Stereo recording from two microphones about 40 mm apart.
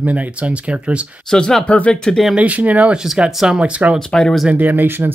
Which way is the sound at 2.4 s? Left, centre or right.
Right.